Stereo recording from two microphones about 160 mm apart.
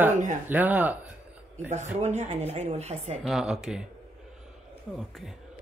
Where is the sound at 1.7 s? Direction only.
45° right (ahead or behind).